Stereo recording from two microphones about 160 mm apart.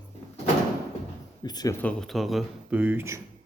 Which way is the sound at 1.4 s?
25° left (ahead or behind).